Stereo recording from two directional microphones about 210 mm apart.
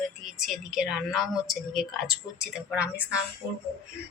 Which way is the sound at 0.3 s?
Centre (ahead or behind).